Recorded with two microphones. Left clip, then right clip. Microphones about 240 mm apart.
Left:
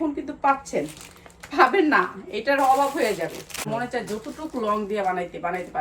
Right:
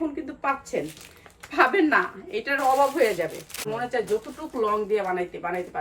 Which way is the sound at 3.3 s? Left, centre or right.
Left.